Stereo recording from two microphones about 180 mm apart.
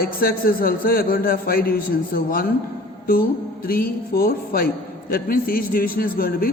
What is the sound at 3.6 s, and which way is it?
A man's voice, 55° left (ahead or behind).